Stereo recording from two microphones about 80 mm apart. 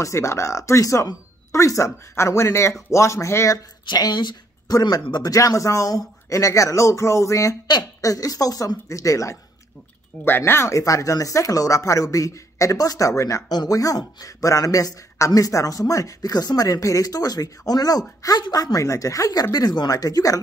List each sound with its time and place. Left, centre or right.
0.0 s speech: left
3.8 s speech: left
4.7 s speech: left
10.2 s speech: left
13.5 s speech: left
19.5 s speech: left